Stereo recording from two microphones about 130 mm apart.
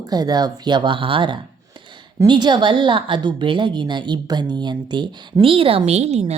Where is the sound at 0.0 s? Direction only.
30° right (ahead or behind).